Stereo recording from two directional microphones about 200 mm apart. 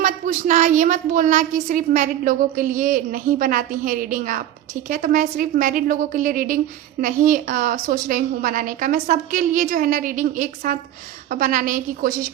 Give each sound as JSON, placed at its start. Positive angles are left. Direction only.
{"t": 0.0, "sound": "a woman's voice", "side_deg": -40}